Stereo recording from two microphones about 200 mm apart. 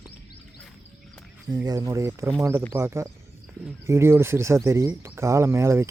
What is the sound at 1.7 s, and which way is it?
Speech, 15° right (ahead or behind).